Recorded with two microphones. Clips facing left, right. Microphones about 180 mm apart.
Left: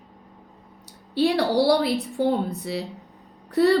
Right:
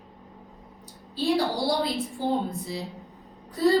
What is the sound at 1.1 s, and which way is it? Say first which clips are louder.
A woman's voice: left 4 dB; 70° left (ahead or behind).